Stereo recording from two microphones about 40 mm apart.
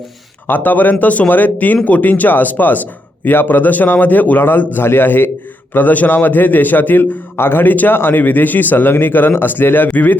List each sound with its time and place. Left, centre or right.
0.4 s speech: left
4.4 s a man's voice: left
5.7 s speech: left
7.6 s a man's voice: left